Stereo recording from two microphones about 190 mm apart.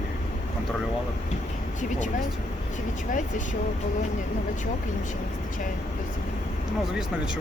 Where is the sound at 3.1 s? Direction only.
40° left (ahead or behind).